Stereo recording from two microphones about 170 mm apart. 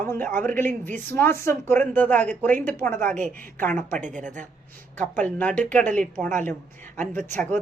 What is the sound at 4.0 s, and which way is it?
Speech, 45° right (ahead or behind).